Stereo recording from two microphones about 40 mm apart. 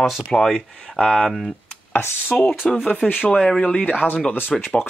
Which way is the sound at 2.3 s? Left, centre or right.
Left.